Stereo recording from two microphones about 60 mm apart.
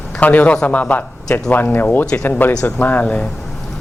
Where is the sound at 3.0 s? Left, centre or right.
Centre.